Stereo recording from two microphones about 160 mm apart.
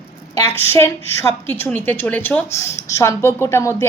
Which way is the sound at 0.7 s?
15° left (ahead or behind).